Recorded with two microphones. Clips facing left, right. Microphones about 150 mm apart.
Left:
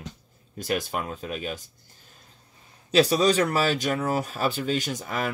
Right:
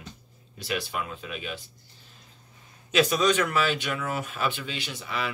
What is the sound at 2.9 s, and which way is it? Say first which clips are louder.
Speech: left 3 dB; 35° left (ahead or behind).